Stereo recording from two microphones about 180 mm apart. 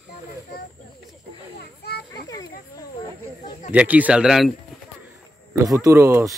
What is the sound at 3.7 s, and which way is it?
Speech, 10° right (ahead or behind).